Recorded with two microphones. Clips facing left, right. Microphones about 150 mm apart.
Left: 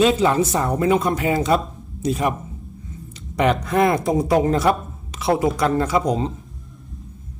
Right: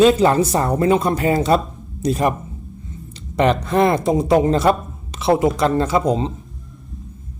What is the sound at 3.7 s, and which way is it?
Speech, 30° right (ahead or behind).